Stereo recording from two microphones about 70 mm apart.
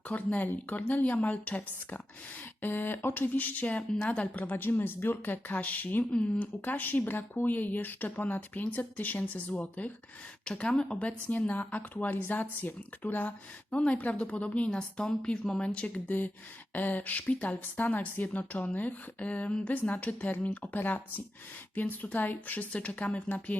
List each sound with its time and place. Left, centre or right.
0.1 s a woman's voice: left